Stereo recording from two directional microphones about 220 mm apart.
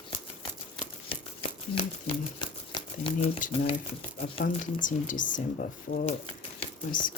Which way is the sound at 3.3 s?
35° left (ahead or behind).